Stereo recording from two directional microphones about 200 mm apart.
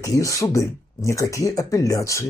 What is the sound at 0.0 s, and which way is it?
Speech, 15° left (ahead or behind).